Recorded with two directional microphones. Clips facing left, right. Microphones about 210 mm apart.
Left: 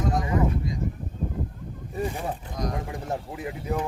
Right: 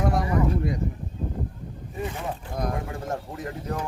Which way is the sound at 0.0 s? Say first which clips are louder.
Right 1 dB; 65° right (ahead or behind).